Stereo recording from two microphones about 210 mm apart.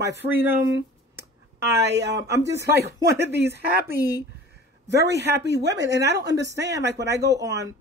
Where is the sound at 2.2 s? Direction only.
15° right (ahead or behind).